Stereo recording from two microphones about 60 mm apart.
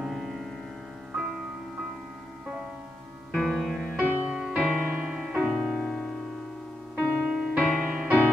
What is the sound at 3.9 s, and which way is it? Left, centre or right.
Music, right.